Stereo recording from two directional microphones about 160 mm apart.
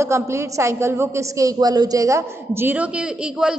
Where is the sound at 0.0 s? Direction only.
15° right (ahead or behind).